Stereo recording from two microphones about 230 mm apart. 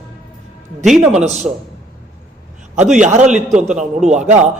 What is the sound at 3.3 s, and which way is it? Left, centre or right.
Speech, centre.